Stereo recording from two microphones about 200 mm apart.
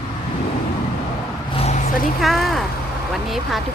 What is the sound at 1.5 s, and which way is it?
Vehicle, 30° left (ahead or behind).